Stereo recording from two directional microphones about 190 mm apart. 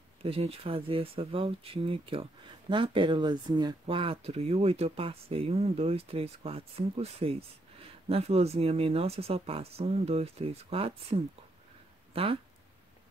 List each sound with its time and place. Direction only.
0.2 s speech: 30° right (ahead or behind)